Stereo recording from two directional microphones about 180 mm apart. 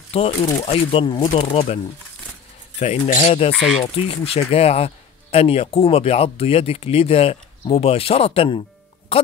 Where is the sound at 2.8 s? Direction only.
40° left (ahead or behind).